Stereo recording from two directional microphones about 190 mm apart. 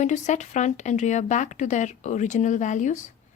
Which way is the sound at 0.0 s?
40° left (ahead or behind).